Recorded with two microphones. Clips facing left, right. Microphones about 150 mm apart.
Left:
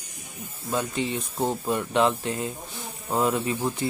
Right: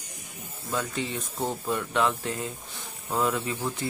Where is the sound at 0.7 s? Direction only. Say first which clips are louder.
Left 3 dB; 20° left (ahead or behind).